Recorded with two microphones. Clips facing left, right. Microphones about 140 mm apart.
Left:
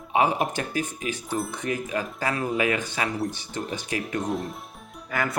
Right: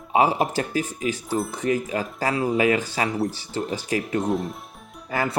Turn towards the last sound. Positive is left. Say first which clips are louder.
# right 2 dB
turn(degrees=-30)  # may be behind; listen again after turning